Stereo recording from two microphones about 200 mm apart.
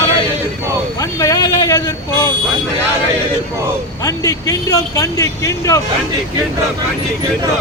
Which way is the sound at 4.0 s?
15° left (ahead or behind).